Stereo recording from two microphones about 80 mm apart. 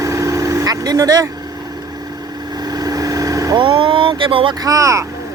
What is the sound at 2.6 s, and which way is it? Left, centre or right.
Vehicle, right.